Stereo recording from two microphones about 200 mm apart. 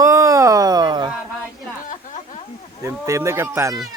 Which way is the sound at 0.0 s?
15° right (ahead or behind).